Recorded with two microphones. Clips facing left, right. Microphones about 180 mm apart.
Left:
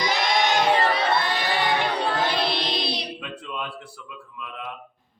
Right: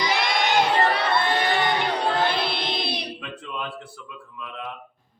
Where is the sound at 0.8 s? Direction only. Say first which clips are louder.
Even; 55° right (ahead or behind).